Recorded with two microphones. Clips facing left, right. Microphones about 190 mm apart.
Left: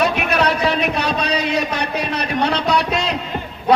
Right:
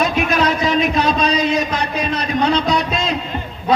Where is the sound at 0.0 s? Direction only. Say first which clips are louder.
Right 1 dB; 65° left (ahead or behind).